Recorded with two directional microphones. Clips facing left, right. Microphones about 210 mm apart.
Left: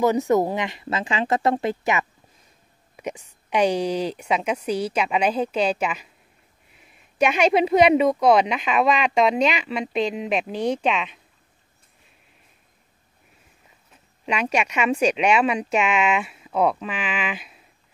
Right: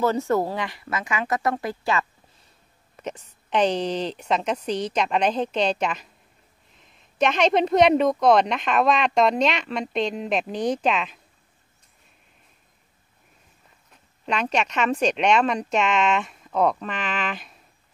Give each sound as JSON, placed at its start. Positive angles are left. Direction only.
{"t": 0.0, "sound": "speech", "side_deg": 15}
{"t": 14.2, "sound": "speech", "side_deg": 10}